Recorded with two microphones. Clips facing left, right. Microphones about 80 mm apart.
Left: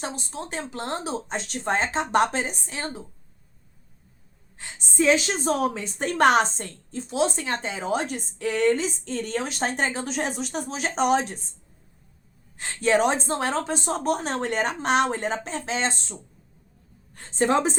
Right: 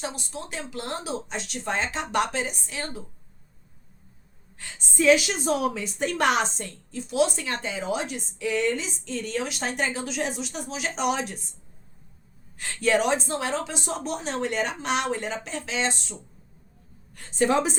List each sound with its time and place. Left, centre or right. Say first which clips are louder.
0.0 s a woman's voice: left 1 dB; left
4.5 s a woman's voice: left 2 dB; left
12.5 s a woman's voice: left 2 dB; left
17.2 s a woman's voice: left 1 dB; left